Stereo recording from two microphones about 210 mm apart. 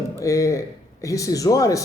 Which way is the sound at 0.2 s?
15° left (ahead or behind).